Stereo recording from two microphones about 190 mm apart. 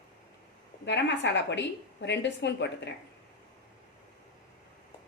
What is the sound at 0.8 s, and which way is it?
A woman's voice, 70° left (ahead or behind).